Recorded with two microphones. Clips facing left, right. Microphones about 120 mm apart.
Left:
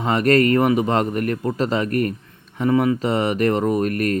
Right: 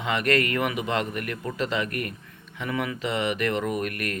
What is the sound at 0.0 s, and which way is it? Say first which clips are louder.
Speech: left 7 dB; 40° left (ahead or behind).